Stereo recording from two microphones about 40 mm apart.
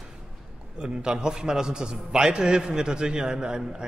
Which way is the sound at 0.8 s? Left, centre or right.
Right.